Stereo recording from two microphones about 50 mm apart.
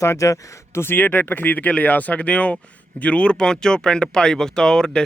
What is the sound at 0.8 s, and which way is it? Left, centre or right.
Speech, left.